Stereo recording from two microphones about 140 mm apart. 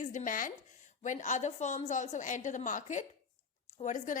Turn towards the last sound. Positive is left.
turn(degrees=65)  # may be behind; listen again after turning